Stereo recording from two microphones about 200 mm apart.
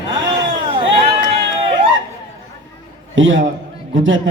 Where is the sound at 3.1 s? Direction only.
75° right (ahead or behind).